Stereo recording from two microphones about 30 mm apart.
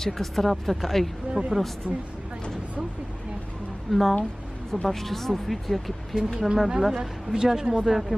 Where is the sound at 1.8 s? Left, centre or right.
Right.